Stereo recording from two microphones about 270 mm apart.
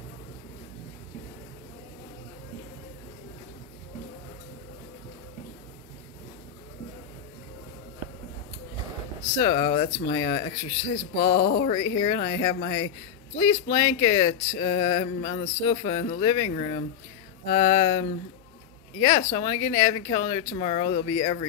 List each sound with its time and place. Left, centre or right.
9.4 s speech: centre
11.3 s speech: left
11.6 s speech: left